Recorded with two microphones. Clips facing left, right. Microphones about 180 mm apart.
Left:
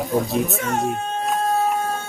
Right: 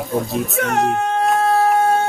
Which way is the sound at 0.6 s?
70° right (ahead or behind).